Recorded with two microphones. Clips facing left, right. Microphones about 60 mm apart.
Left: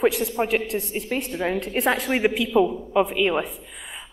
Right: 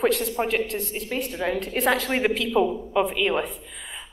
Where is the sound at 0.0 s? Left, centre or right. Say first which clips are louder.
Left 1 dB; centre.